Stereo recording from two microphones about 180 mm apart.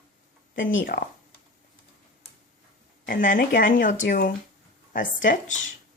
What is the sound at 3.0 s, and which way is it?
Speech, 50° left (ahead or behind).